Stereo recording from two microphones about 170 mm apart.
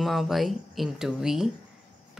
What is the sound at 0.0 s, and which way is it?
Speech, centre (ahead or behind).